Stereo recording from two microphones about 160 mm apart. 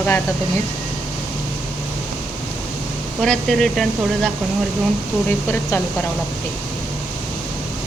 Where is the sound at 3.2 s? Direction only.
Centre (ahead or behind).